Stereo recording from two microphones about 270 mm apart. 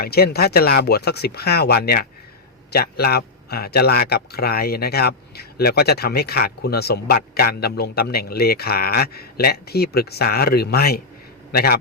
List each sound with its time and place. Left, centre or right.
0.0 s a man's voice: left